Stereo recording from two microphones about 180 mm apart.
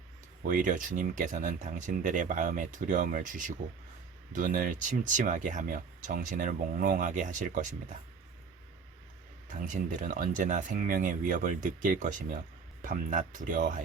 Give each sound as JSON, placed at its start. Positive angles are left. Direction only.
{"t": 0.4, "sound": "speech", "side_deg": -45}
{"t": 9.6, "sound": "speech", "side_deg": -45}